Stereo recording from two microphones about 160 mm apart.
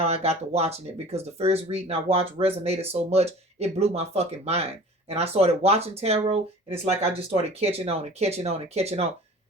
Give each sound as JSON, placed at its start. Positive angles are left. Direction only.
{"t": 0.0, "sound": "speech", "side_deg": -40}